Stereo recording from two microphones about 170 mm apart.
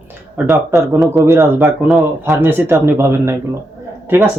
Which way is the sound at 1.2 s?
15° right (ahead or behind).